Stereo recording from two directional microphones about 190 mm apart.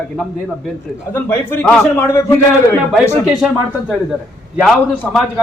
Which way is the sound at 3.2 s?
5° right (ahead or behind).